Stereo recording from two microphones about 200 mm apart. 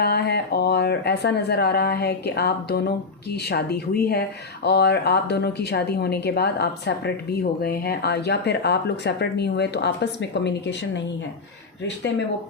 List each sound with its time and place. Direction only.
0.0 s speech: 55° left (ahead or behind)